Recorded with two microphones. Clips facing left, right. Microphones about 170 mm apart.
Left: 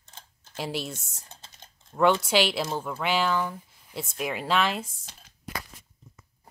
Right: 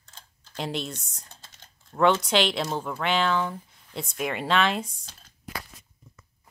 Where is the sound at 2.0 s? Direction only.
5° left (ahead or behind).